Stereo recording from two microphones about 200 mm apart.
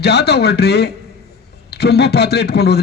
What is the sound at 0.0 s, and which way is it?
A man's voice, 55° left (ahead or behind).